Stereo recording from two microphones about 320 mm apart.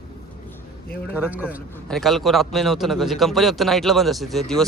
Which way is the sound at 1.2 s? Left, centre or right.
Centre.